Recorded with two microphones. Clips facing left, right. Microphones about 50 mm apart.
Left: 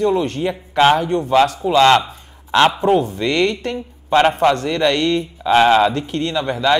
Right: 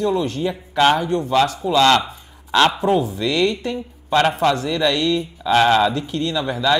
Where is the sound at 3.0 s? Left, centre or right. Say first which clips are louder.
Left 2 dB; centre.